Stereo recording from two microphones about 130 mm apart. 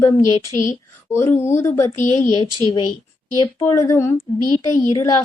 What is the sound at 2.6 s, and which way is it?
Speech, 35° left (ahead or behind).